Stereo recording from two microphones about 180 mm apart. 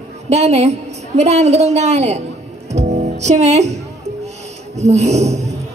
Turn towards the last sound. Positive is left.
turn(degrees=-40)  # may be behind; listen again after turning